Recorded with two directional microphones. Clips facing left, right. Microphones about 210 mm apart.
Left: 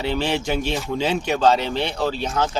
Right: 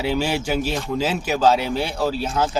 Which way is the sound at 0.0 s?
10° right (ahead or behind).